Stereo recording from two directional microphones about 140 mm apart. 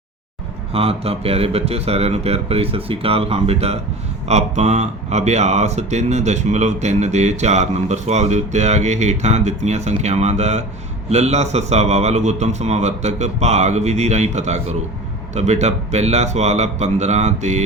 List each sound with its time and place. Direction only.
0.7 s speech: 45° right (ahead or behind)